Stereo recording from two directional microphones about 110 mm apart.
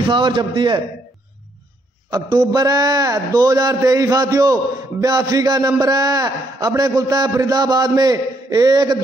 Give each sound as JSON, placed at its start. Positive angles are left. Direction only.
{"t": 0.1, "sound": "a man's voice", "side_deg": -45}
{"t": 2.0, "sound": "a man's voice", "side_deg": -35}